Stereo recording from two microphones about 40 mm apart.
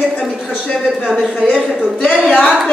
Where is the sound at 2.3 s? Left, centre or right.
Left.